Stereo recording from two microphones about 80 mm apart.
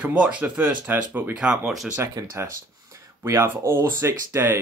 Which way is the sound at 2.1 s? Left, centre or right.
Right.